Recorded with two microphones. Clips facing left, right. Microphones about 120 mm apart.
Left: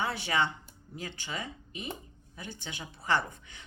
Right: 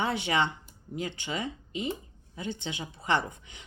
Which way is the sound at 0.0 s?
20° right (ahead or behind).